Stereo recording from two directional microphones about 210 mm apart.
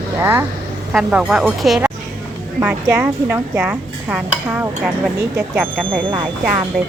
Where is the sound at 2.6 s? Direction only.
10° right (ahead or behind).